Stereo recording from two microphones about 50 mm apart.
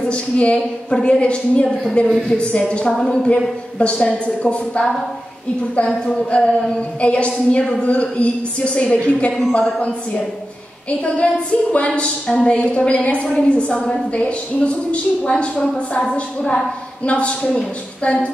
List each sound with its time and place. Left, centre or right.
0.0 s a woman's voice: left
5.9 s a woman's voice: centre
10.9 s a woman's voice: left